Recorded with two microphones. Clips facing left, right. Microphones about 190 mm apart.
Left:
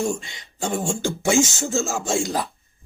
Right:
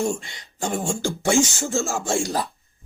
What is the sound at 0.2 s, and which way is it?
Speech, 20° left (ahead or behind).